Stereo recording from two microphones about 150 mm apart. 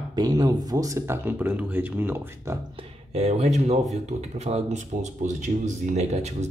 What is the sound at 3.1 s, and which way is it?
Speech, 45° right (ahead or behind).